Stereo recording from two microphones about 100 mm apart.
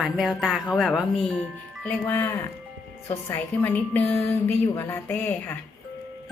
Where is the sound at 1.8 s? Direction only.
20° left (ahead or behind).